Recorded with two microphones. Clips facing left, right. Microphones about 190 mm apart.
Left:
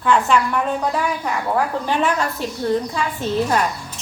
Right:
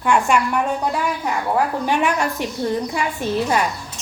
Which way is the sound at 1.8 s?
15° right (ahead or behind).